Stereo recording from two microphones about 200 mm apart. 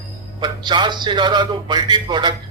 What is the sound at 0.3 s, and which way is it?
Fowl, 20° right (ahead or behind).